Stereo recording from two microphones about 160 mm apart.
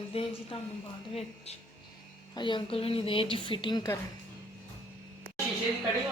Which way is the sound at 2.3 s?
30° left (ahead or behind).